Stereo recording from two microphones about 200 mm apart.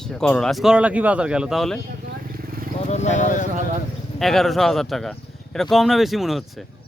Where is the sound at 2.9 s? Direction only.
35° left (ahead or behind).